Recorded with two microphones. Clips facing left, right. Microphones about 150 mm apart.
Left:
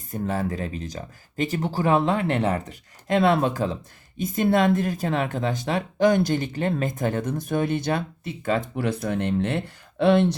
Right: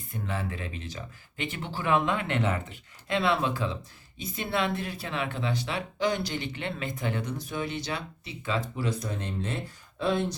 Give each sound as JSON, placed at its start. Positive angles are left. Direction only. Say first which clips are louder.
{"t": 0.1, "sound": "speech", "louder": "left 8 dB", "side_deg": 40}